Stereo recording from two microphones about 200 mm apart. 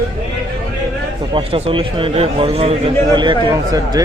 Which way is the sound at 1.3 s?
30° right (ahead or behind).